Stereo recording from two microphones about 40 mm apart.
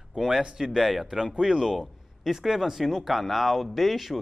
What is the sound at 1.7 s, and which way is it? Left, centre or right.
Speech, centre.